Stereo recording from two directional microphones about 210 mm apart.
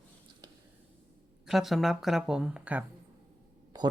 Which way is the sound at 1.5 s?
Centre (ahead or behind).